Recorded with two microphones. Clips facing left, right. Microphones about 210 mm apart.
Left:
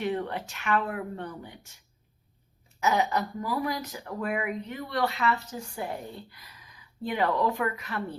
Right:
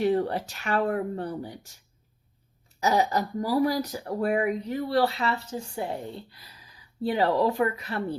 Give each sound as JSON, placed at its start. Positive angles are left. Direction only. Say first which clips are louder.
{"t": 0.0, "sound": "speech", "louder": "right 6 dB", "side_deg": -35}
{"t": 2.8, "sound": "speech", "louder": "right 2 dB", "side_deg": -35}
{"t": 6.0, "sound": "speech", "louder": "right 3 dB", "side_deg": 0}
{"t": 6.3, "sound": "speech", "louder": "even", "side_deg": -35}